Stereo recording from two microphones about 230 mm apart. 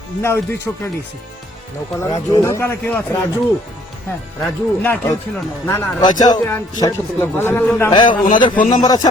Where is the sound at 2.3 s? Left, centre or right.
Centre.